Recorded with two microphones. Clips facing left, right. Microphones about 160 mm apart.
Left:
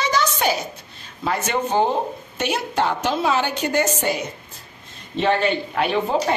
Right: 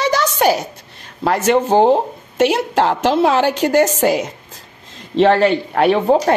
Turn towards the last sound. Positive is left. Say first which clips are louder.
# right 7 dB
turn(degrees=-60)  # may be behind; listen again after turning